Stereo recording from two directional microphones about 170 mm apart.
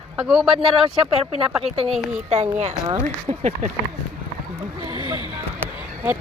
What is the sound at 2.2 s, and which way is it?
Speech, 35° right (ahead or behind).